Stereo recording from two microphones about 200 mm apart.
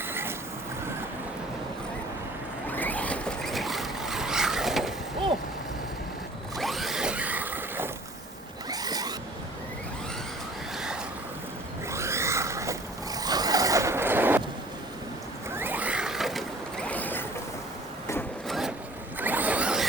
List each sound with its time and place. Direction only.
0.0 s vehicle: 10° right (ahead or behind)
2.6 s zipper: 10° left (ahead or behind)
6.6 s a sound: centre (ahead or behind)
8.7 s vehicle: 20° right (ahead or behind)
11.9 s vehicle: 15° right (ahead or behind)
15.5 s a sound: 10° right (ahead or behind); by 17.2 s 10° left (ahead or behind)
18.4 s printer: centre (ahead or behind)
19.2 s zipper: 10° right (ahead or behind)